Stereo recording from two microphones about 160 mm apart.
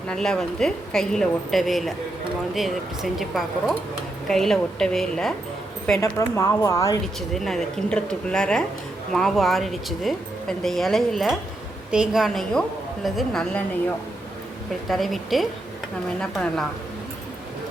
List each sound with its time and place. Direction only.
0.1 s a woman's voice: 5° left (ahead or behind)
6.0 s speech: 20° left (ahead or behind)
7.3 s a woman's voice: centre (ahead or behind)
14.8 s a woman's voice: centre (ahead or behind)